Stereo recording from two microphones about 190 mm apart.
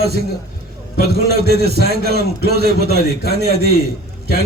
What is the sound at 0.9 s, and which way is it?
A man's voice, 55° right (ahead or behind).